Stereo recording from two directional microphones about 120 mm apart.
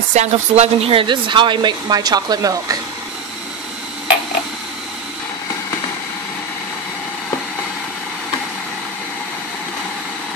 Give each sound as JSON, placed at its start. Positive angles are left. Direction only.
{"t": 0.1, "sound": "speech", "side_deg": -70}